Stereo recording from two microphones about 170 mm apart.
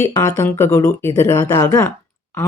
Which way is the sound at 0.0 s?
15° left (ahead or behind).